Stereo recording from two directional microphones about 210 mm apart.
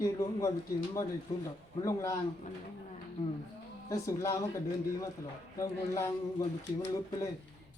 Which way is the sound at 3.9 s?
15° left (ahead or behind).